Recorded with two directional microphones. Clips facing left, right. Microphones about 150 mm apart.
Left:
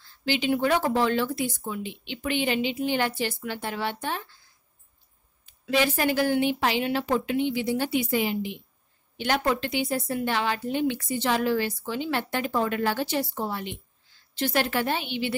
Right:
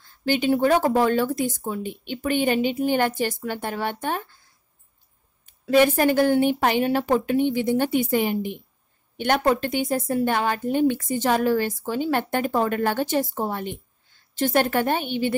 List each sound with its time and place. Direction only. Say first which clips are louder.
0.0 s a woman's voice: right 4 dB; 50° right (ahead or behind)
5.4 s a woman's voice: right 7 dB; 50° right (ahead or behind)